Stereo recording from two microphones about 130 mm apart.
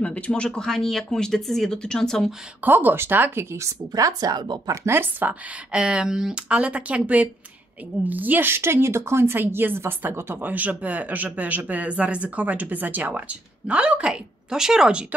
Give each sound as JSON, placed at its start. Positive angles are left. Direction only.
{"t": 0.0, "sound": "speech", "side_deg": 10}
{"t": 2.6, "sound": "speech", "side_deg": -15}
{"t": 4.8, "sound": "a woman's voice", "side_deg": -15}